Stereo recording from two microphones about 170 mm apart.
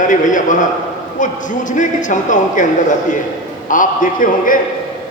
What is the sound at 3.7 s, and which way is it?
Speech, 50° left (ahead or behind).